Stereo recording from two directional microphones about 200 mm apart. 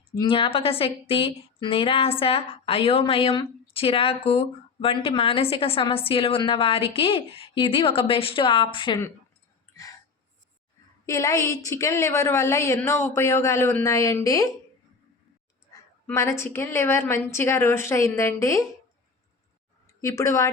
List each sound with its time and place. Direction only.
0.2 s a woman's voice: 25° left (ahead or behind)
11.0 s a woman's voice: 15° left (ahead or behind)
16.0 s a woman's voice: 15° left (ahead or behind)
20.0 s a woman's voice: 15° left (ahead or behind)